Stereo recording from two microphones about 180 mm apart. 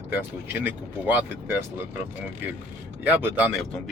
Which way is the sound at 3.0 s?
10° right (ahead or behind).